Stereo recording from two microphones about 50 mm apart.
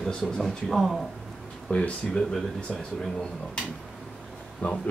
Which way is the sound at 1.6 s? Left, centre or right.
Left.